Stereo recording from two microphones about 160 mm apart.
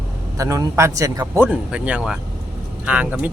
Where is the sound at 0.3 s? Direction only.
20° right (ahead or behind).